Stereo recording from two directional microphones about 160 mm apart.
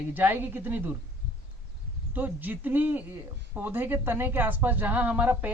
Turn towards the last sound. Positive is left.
turn(degrees=-10)  # may be behind; listen again after turning